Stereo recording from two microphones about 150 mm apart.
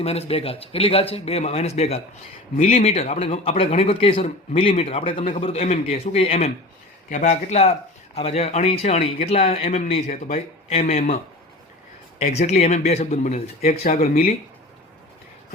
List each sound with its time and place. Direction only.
0.0 s a man's voice: 45° left (ahead or behind)
12.2 s speech: 45° left (ahead or behind)